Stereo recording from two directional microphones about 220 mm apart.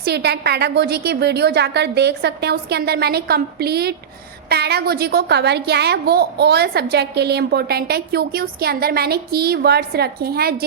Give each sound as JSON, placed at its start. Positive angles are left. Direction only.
{"t": 0.0, "sound": "a woman's voice", "side_deg": -50}